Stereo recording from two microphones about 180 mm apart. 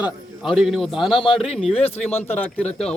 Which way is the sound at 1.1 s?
30° left (ahead or behind).